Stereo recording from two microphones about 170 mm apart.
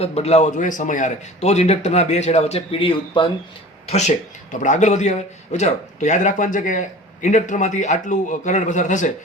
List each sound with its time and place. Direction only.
0.0 s a man's voice: 40° left (ahead or behind)